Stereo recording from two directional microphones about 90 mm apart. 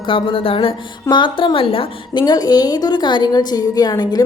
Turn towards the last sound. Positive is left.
turn(degrees=45)  # may be behind; listen again after turning